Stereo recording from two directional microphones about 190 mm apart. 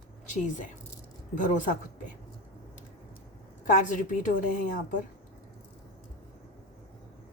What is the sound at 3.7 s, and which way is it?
Speech, 40° left (ahead or behind).